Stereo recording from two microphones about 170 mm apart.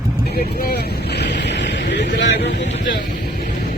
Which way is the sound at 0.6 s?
70° left (ahead or behind).